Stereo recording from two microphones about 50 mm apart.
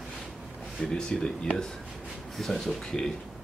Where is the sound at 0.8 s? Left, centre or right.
Centre.